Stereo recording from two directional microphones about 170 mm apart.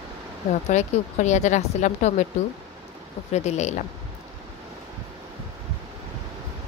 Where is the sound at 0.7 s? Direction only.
45° left (ahead or behind).